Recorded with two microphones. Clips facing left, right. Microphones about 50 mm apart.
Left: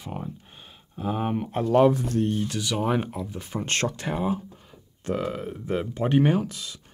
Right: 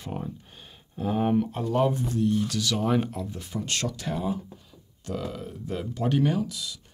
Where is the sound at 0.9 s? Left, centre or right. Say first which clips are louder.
Right 3 dB; centre.